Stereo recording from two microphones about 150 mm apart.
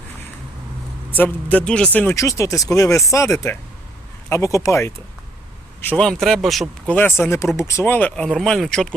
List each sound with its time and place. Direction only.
1.1 s speech: 10° left (ahead or behind)
4.3 s speech: 20° left (ahead or behind)
5.8 s speech: 10° left (ahead or behind)
6.9 s speech: 15° left (ahead or behind)